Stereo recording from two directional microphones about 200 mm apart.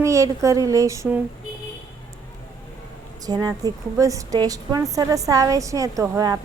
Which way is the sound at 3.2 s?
20° right (ahead or behind).